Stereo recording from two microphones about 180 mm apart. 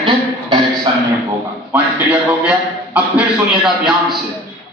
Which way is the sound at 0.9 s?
30° right (ahead or behind).